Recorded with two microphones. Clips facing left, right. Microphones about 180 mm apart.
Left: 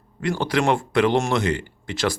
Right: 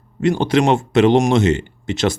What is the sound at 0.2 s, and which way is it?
Speech, 20° right (ahead or behind).